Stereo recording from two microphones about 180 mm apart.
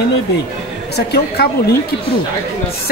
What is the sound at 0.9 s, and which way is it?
Speech, 65° left (ahead or behind).